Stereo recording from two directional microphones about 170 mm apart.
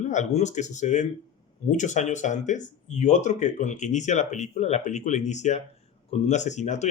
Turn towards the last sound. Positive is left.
turn(degrees=45)  # may be behind; listen again after turning